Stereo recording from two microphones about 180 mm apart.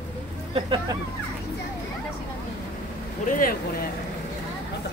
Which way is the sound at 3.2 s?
50° left (ahead or behind).